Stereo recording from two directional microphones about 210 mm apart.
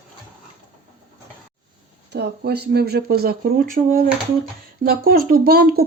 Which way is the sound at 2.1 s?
50° right (ahead or behind).